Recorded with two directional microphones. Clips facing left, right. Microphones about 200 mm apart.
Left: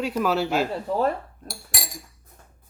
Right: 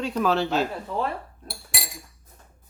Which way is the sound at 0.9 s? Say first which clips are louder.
Left 5 dB; 40° left (ahead or behind).